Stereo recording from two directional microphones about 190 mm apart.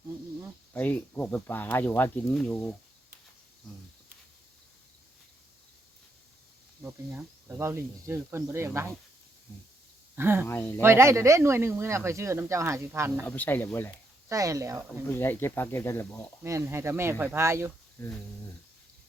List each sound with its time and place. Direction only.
0.7 s speech: 10° left (ahead or behind)
6.8 s speech: 10° right (ahead or behind)
10.2 s speech: 10° right (ahead or behind)
10.4 s speech: 10° left (ahead or behind)
10.8 s speech: 15° right (ahead or behind)
13.2 s speech: 10° left (ahead or behind)
14.3 s speech: 15° right (ahead or behind)
15.1 s speech: 10° left (ahead or behind)
16.4 s speech: 15° right (ahead or behind)
18.0 s speech: 15° left (ahead or behind)